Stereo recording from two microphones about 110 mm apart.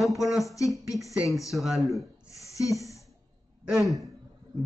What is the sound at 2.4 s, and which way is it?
Speech, 30° left (ahead or behind).